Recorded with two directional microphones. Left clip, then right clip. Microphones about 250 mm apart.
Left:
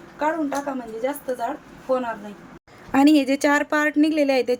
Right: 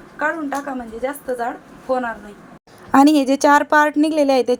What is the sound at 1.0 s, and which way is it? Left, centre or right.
A woman's voice, centre.